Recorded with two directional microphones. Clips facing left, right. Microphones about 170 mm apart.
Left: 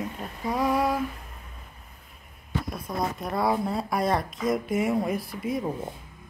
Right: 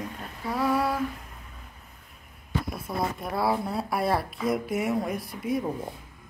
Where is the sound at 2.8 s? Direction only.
5° right (ahead or behind).